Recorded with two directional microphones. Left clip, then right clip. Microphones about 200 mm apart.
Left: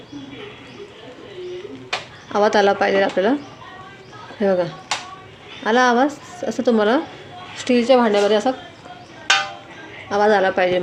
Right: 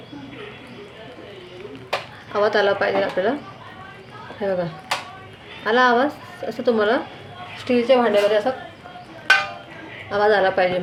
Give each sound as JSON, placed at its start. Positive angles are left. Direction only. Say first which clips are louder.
{"t": 2.3, "sound": "speech", "louder": "left 3 dB", "side_deg": 45}
{"t": 4.4, "sound": "speech", "louder": "left 5 dB", "side_deg": 45}
{"t": 10.1, "sound": "speech", "louder": "left 1 dB", "side_deg": 45}